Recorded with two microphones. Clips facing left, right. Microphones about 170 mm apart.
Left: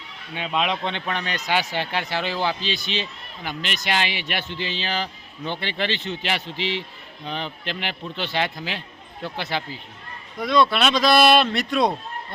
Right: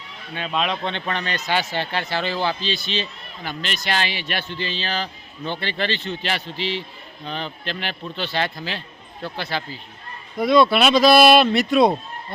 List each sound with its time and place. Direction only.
0.3 s speech: 15° left (ahead or behind)
10.3 s speech: 10° right (ahead or behind)